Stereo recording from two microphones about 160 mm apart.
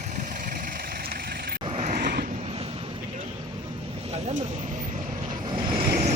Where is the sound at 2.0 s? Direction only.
80° right.